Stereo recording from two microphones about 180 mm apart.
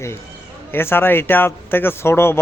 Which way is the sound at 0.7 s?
10° left (ahead or behind).